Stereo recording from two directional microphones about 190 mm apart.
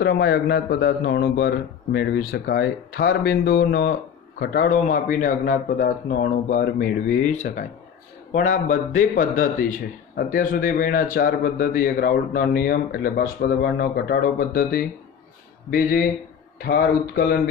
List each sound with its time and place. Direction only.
0.0 s a man's voice: 55° left (ahead or behind)
16.5 s a man's voice: 55° left (ahead or behind)